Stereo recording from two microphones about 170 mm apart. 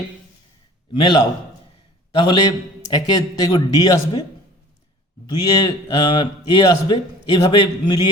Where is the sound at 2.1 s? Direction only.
30° left (ahead or behind).